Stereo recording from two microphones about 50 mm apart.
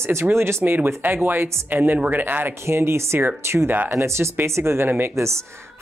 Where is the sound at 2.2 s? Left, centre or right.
Right.